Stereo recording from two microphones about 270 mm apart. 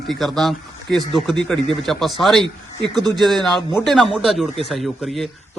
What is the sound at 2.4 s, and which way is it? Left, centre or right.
Speech, centre.